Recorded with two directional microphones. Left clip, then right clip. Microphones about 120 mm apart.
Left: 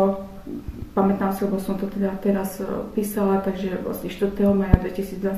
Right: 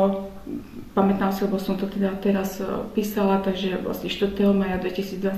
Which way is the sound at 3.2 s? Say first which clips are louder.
Even; 10° right (ahead or behind).